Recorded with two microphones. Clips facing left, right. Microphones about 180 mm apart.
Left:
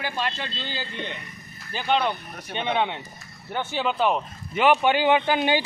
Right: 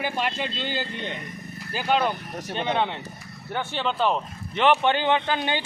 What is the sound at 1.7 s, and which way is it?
Speech, 5° right (ahead or behind).